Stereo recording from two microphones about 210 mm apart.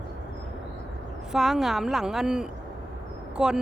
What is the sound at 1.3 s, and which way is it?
Speech, centre (ahead or behind).